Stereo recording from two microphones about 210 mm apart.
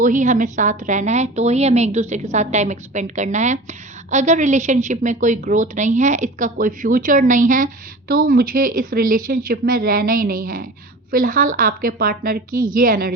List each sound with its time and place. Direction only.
0.0 s a woman's voice: 35° right (ahead or behind)